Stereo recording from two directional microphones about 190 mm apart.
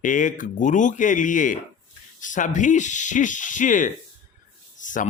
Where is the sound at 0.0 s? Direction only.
45° left (ahead or behind).